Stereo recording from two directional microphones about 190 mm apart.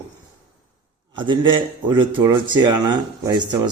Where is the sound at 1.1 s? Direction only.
25° right (ahead or behind).